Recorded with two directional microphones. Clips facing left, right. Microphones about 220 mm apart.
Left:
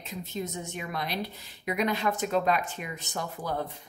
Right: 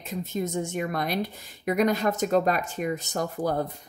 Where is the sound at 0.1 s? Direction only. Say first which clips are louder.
Right 6 dB; 50° right (ahead or behind).